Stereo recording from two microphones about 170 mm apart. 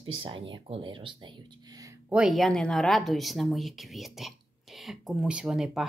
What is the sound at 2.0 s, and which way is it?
A woman's voice, 5° right (ahead or behind).